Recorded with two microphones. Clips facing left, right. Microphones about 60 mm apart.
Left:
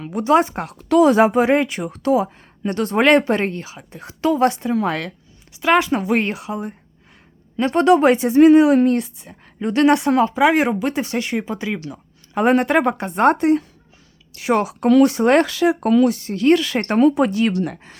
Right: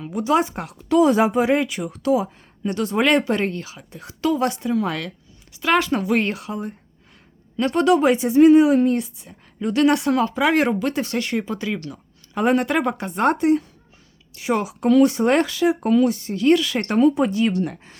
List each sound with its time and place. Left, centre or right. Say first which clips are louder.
0.0 s speech: left 4 dB; left
0.9 s speech: left 3 dB; left
5.5 s speech: left 3 dB; left
7.5 s speech: left 3 dB; left
8.1 s speech: left 2 dB; left
9.6 s speech: left 3 dB; left
12.3 s speech: left 3 dB; left
14.3 s speech: left 4 dB; left
17.1 s speech: left 2 dB; left